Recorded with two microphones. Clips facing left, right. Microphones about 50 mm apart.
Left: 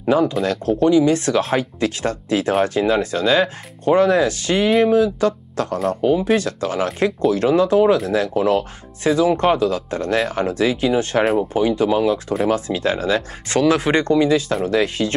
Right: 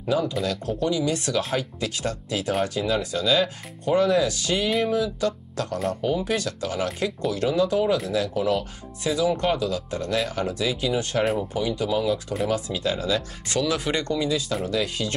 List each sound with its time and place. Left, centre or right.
0.0 s speech: left